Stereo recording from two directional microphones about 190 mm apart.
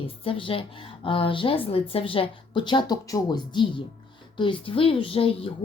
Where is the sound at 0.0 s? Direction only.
30° left (ahead or behind).